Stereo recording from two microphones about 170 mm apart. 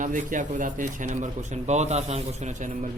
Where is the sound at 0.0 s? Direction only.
50° right (ahead or behind).